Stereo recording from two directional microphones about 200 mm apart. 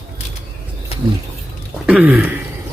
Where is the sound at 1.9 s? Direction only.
5° right (ahead or behind).